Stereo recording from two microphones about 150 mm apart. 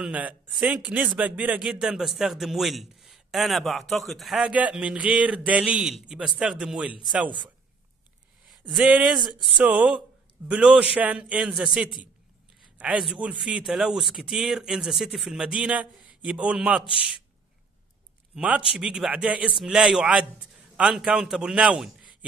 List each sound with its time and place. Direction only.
0.0 s a man's voice: 10° right (ahead or behind)
7.2 s speech: 30° right (ahead or behind)
8.5 s a sound: centre (ahead or behind)
9.6 s a man's voice: 10° right (ahead or behind)
18.3 s a man's voice: 5° right (ahead or behind)